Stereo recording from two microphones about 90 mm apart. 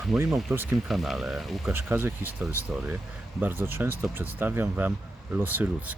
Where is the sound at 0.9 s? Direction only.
5° right (ahead or behind).